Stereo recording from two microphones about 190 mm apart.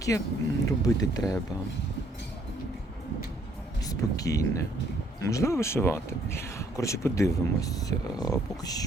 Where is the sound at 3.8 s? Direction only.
20° left (ahead or behind).